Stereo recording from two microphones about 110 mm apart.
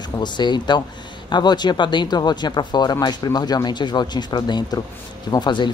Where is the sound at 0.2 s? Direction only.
40° left (ahead or behind).